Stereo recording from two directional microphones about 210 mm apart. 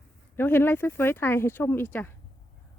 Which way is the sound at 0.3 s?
10° left (ahead or behind).